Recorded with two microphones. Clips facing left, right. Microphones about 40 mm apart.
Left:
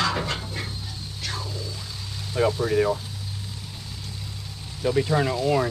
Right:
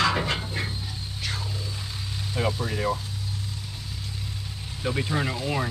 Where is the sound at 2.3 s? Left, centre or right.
Centre.